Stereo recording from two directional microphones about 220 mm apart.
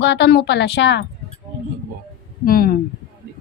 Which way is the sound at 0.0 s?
55° left (ahead or behind).